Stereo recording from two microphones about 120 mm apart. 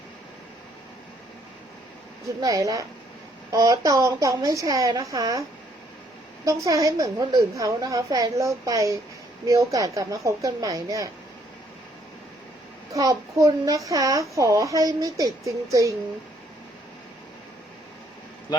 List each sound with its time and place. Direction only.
2.2 s a woman's voice: 30° right (ahead or behind)
12.9 s a woman's voice: 30° right (ahead or behind)